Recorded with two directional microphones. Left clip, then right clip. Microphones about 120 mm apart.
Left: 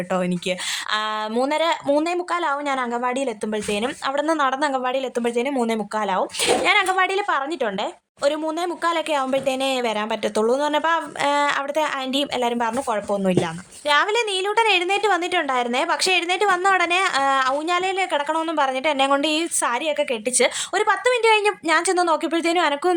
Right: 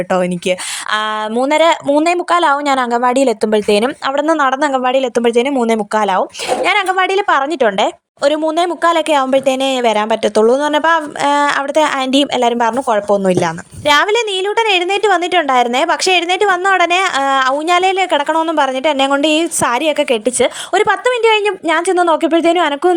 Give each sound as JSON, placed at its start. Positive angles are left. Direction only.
{"t": 0.1, "sound": "a woman's voice", "side_deg": -55}
{"t": 4.0, "sound": "speech", "side_deg": -45}
{"t": 6.7, "sound": "speech", "side_deg": -40}
{"t": 8.2, "sound": "speech", "side_deg": -45}
{"t": 14.1, "sound": "a woman's voice", "side_deg": -40}
{"t": 20.4, "sound": "a woman's voice", "side_deg": -40}